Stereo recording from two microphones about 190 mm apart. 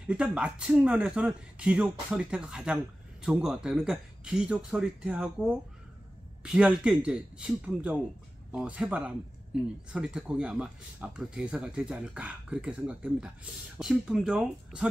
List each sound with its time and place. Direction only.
0.0 s speech: 5° right (ahead or behind)